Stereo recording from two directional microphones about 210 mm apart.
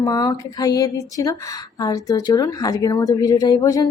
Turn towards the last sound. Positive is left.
turn(degrees=20)  # may be behind; listen again after turning